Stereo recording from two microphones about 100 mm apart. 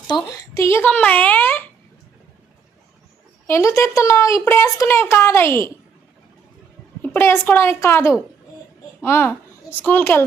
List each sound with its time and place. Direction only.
0.1 s a woman's voice: 45° left (ahead or behind); by 1.6 s 20° left (ahead or behind)
3.4 s a woman's voice: 30° left (ahead or behind)
7.0 s a woman's voice: 20° left (ahead or behind)